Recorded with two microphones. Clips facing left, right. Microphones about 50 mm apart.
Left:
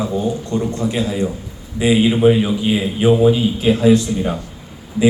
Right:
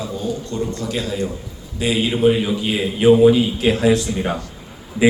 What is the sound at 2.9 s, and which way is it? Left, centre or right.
A man's voice, centre.